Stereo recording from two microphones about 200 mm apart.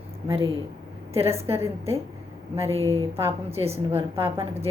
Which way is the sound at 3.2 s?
30° right (ahead or behind).